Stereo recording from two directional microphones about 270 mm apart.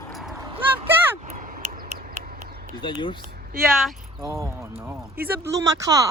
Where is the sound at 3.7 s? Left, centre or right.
Centre.